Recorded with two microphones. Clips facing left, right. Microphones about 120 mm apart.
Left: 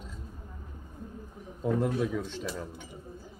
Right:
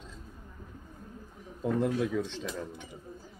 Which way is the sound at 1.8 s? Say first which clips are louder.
Right 3 dB; 5° left (ahead or behind).